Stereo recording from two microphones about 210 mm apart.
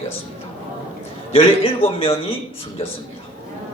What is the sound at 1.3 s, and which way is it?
Speech, 25° left (ahead or behind).